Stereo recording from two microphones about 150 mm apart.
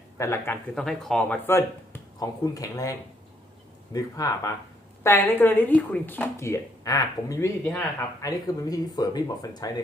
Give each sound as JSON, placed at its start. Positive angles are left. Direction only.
{"t": 0.2, "sound": "speech", "side_deg": 15}
{"t": 0.8, "sound": "speech", "side_deg": 5}
{"t": 1.5, "sound": "speech", "side_deg": 15}
{"t": 8.2, "sound": "speech", "side_deg": 25}